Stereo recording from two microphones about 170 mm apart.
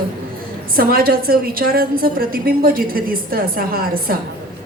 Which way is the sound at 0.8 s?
60° right (ahead or behind).